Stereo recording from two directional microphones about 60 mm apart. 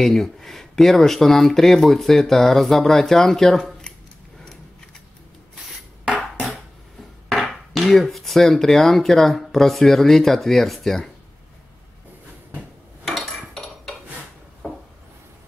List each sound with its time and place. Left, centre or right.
0.0 s speech: centre
6.0 s music: right
7.2 s speech: centre